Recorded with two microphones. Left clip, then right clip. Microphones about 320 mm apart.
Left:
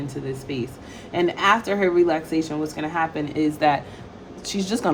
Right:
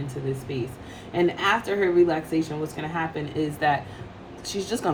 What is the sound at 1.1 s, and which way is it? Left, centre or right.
A woman's voice, left.